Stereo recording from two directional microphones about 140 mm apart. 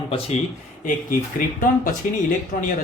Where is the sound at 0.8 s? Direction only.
75° left (ahead or behind).